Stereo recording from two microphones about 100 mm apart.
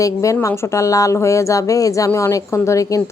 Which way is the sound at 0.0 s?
30° left (ahead or behind).